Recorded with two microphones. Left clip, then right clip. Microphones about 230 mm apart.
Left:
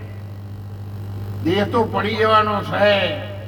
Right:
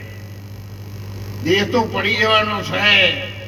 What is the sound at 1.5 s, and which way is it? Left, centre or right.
Speech, left.